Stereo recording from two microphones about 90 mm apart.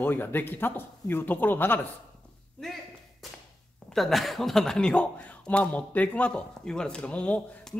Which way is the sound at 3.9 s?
Centre (ahead or behind).